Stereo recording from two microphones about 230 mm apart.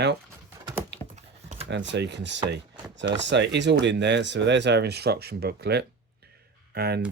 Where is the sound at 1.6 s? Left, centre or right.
Right.